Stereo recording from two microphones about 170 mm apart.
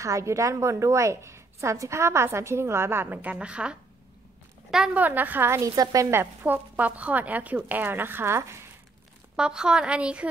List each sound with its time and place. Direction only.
0.0 s a woman's voice: 20° right (ahead or behind)
9.4 s a woman's voice: 5° right (ahead or behind)